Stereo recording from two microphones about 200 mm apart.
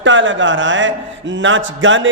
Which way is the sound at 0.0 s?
70° right (ahead or behind).